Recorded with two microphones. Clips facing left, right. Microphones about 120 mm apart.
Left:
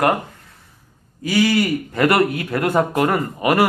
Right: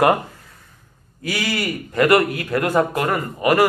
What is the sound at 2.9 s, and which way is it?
Speech, 40° left (ahead or behind).